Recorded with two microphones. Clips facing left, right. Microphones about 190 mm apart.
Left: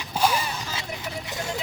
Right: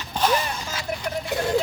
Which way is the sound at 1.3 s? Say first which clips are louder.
Right 10 dB; 60° right (ahead or behind).